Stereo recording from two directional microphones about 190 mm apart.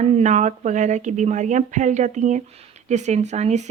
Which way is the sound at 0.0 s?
35° right (ahead or behind).